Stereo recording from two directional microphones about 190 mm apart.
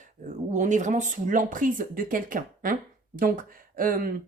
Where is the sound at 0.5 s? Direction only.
40° right (ahead or behind).